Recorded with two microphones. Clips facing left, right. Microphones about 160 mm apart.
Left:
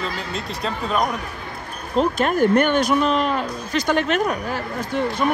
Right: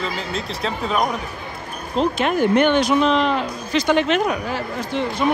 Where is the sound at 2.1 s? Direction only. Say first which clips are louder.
Even; 45° left (ahead or behind).